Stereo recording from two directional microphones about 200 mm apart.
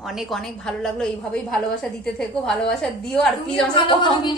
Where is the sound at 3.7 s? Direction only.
25° left (ahead or behind).